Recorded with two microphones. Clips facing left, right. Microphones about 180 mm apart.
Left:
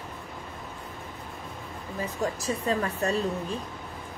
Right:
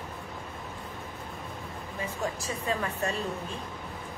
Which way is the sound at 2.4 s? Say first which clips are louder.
Left 4 dB; 35° left (ahead or behind).